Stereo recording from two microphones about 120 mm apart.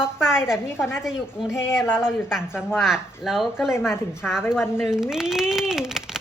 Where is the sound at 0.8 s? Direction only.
20° left (ahead or behind).